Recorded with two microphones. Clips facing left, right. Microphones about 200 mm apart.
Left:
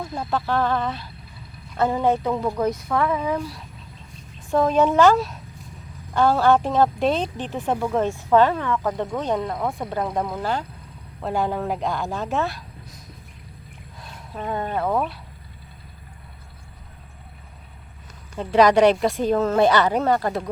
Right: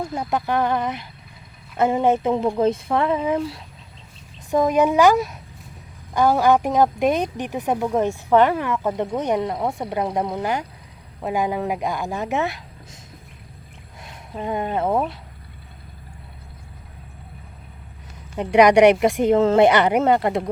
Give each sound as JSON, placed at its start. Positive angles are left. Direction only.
{"t": 0.0, "sound": "speech", "side_deg": -20}
{"t": 14.0, "sound": "speech", "side_deg": -20}
{"t": 18.3, "sound": "speech", "side_deg": -15}